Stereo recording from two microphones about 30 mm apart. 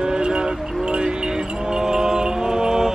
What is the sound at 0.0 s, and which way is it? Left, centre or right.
Wind chime, right.